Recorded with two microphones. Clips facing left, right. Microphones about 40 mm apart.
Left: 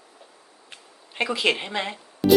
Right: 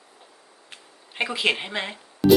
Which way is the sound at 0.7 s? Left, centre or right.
Centre.